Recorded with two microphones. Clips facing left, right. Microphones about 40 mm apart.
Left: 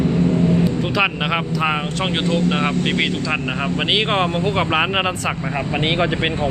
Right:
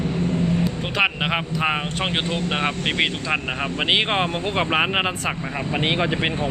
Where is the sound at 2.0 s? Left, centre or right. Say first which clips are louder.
Left 7 dB; centre.